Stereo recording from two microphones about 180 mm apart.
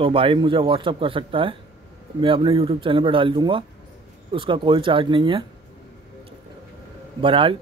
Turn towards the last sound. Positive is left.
turn(degrees=-30)  # may be behind; listen again after turning